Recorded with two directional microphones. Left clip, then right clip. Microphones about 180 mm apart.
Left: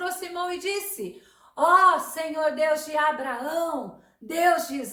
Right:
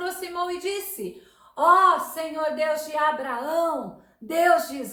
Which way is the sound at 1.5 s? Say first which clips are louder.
Right 1 dB; 20° left (ahead or behind).